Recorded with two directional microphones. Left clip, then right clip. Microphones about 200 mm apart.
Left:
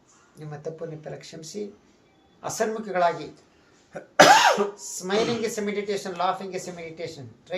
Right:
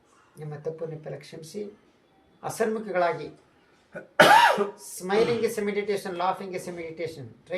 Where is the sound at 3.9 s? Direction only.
55° left (ahead or behind).